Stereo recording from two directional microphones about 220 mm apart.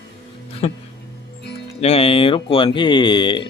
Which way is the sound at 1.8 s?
25° left (ahead or behind).